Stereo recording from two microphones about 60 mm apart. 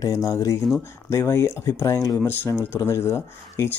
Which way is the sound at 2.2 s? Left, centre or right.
Left.